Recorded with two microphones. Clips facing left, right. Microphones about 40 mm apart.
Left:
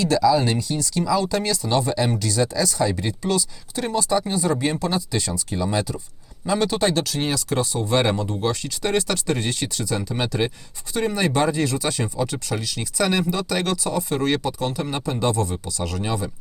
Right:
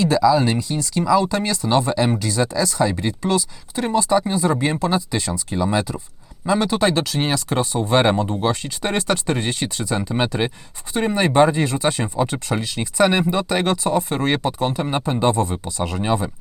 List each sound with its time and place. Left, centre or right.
0.2 s speech: centre
0.4 s speech: right
6.5 s speech: right